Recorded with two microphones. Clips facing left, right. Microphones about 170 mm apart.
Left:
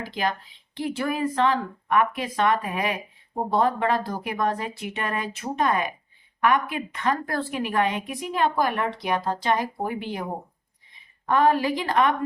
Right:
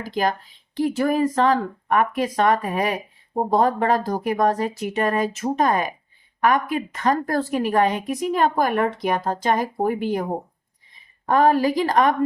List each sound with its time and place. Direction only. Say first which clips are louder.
0.0 s a woman's voice: right 4 dB; 45° right (ahead or behind)
11.3 s speech: right 3 dB; 40° right (ahead or behind)